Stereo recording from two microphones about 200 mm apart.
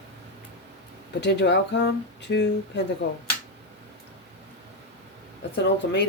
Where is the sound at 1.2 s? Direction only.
60° left (ahead or behind).